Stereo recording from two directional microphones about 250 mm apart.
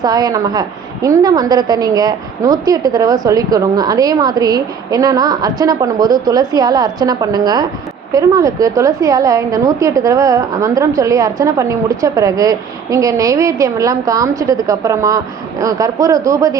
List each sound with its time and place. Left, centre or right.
0.0 s a woman's voice: centre